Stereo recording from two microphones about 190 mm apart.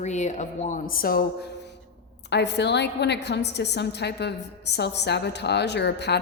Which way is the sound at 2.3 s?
65° left (ahead or behind).